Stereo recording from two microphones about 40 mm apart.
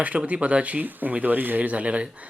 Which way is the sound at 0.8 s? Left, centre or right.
Right.